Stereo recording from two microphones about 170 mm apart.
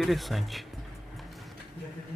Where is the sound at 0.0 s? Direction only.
Centre (ahead or behind).